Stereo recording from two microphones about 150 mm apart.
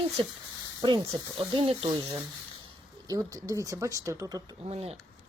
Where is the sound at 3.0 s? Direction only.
20° right (ahead or behind).